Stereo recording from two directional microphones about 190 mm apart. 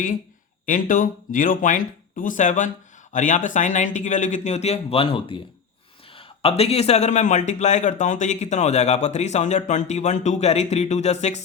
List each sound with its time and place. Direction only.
0.6 s speech: 45° left (ahead or behind)